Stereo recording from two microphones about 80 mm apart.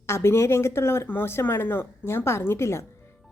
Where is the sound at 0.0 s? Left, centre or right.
Left.